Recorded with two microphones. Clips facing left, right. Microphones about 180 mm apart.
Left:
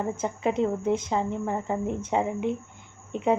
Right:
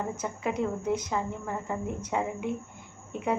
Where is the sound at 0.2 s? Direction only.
25° left (ahead or behind).